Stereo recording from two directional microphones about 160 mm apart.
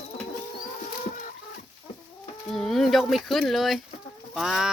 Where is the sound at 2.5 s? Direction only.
Centre (ahead or behind).